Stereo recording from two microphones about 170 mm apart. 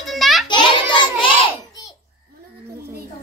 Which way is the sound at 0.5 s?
30° left (ahead or behind).